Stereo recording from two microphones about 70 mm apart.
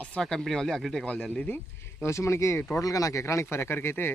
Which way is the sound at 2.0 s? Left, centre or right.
Left.